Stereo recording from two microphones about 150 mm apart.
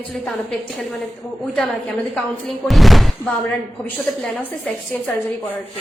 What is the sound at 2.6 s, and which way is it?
Speech, centre (ahead or behind).